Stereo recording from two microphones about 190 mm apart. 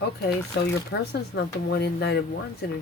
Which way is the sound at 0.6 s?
65° left (ahead or behind).